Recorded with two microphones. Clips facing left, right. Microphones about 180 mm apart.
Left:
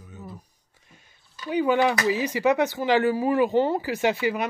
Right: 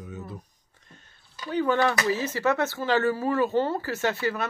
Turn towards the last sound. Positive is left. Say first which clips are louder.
# left 3 dB
turn(degrees=15)  # may be behind; listen again after turning